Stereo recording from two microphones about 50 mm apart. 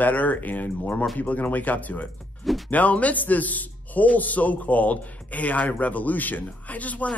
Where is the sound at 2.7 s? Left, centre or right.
Left.